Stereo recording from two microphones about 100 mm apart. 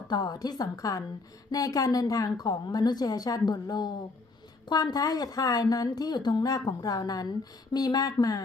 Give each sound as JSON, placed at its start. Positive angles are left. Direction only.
{"t": 0.1, "sound": "a woman's voice", "side_deg": 45}